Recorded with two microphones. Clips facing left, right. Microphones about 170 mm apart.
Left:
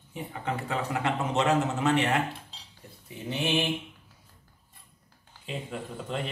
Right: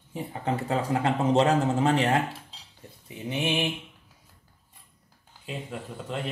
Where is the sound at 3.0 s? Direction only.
15° right (ahead or behind).